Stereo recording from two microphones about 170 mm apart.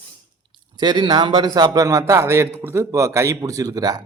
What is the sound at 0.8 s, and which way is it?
A man's voice, 25° right (ahead or behind).